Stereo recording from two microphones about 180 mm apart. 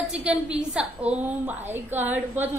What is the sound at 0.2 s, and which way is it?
A woman's voice, 5° right (ahead or behind).